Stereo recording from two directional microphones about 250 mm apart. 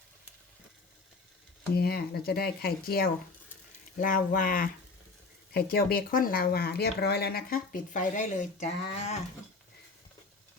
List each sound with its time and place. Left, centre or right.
1.7 s speech: left